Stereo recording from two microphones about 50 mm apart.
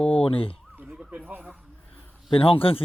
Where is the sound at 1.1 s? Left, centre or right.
Right.